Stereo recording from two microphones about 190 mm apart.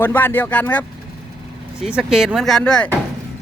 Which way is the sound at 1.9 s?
5° right (ahead or behind).